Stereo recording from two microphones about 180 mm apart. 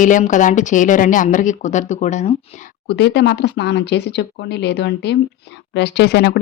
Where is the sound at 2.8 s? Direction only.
65° left (ahead or behind).